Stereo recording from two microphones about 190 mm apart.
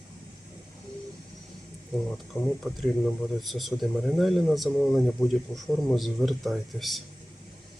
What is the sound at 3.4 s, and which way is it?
Speech, centre (ahead or behind).